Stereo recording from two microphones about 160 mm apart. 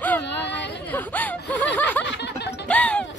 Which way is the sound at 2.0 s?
90° left.